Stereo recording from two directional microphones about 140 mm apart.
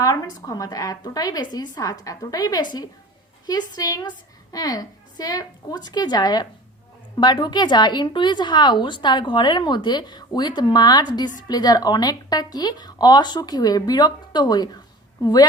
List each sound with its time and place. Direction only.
0.0 s a woman's voice: 25° left (ahead or behind)